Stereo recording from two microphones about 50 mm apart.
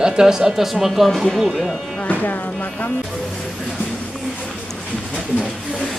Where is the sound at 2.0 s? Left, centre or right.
Left.